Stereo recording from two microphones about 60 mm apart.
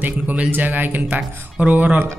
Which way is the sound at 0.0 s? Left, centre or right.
Right.